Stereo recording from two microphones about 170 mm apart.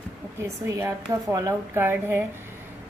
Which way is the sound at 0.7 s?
15° right (ahead or behind).